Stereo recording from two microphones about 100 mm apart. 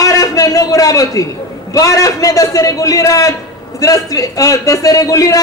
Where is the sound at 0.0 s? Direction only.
35° left (ahead or behind).